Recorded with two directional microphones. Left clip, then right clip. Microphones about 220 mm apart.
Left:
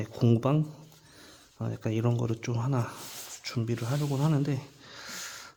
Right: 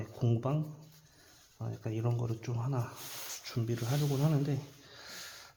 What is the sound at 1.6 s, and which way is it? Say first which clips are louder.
Speech: left 7 dB; 45° left (ahead or behind).